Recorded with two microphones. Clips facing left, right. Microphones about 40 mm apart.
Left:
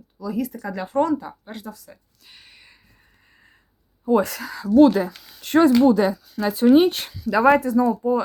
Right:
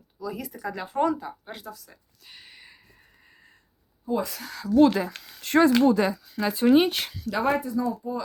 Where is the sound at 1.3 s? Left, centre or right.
Centre.